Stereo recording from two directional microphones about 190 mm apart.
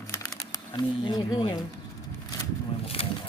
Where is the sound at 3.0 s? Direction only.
30° left (ahead or behind).